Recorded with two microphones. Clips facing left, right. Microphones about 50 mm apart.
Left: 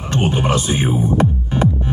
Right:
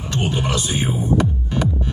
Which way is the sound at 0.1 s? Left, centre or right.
Left.